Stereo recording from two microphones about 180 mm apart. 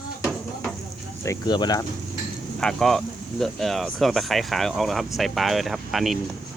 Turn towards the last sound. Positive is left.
turn(degrees=0)  # may be behind; listen again after turning